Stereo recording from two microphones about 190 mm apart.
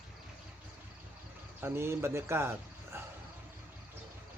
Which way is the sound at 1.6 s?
15° right (ahead or behind).